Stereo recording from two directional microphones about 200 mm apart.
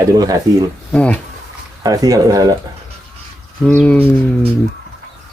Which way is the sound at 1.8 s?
20° right (ahead or behind).